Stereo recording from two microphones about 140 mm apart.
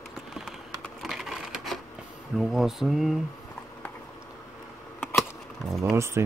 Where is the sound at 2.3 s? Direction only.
5° right (ahead or behind).